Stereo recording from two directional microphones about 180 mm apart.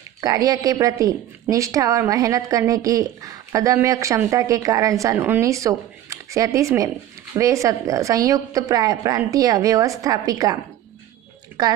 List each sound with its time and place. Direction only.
0.2 s a woman's voice: 20° right (ahead or behind)